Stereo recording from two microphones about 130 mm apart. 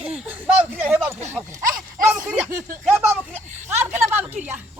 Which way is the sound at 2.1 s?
10° right (ahead or behind).